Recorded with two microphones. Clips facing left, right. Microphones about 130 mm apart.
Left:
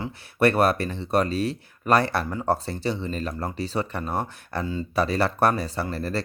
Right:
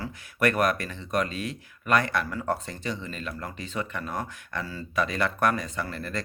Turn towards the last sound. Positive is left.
turn(degrees=35)  # may be behind; listen again after turning